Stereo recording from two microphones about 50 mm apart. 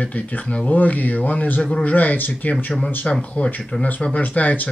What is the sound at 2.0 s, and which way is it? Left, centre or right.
Speech, left.